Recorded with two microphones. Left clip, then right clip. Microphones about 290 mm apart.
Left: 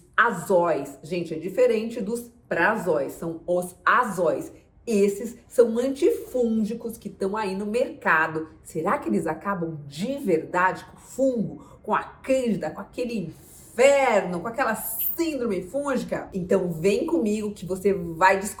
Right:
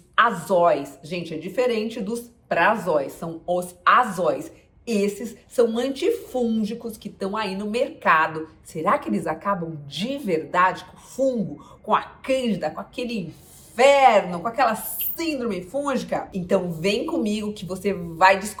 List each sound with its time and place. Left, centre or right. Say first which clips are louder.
0.6 s a woman's voice: right 5 dB; centre